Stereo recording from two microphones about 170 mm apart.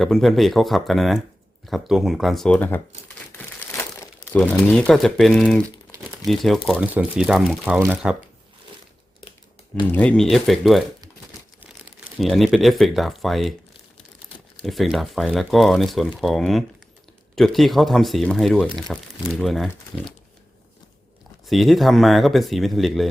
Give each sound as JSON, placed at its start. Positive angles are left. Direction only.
{"t": 0.0, "sound": "speech", "side_deg": 0}
{"t": 3.3, "sound": "crumpling", "side_deg": 15}
{"t": 4.4, "sound": "speech", "side_deg": 5}
{"t": 9.8, "sound": "speech", "side_deg": 10}
{"t": 12.2, "sound": "speech", "side_deg": 0}
{"t": 14.6, "sound": "speech", "side_deg": 0}
{"t": 21.4, "sound": "speech", "side_deg": 0}